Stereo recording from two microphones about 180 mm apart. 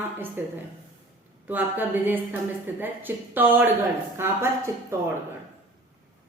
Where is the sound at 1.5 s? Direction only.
10° right (ahead or behind).